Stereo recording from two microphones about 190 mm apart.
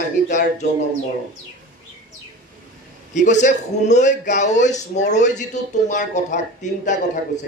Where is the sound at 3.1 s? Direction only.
40° left (ahead or behind).